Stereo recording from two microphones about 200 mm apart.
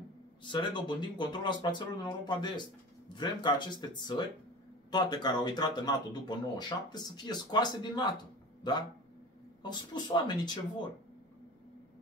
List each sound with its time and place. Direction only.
0.4 s speech: 25° left (ahead or behind)